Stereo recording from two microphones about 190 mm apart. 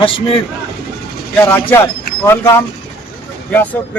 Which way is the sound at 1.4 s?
10° left (ahead or behind).